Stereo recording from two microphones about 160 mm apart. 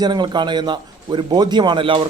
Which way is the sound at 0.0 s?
25° right (ahead or behind).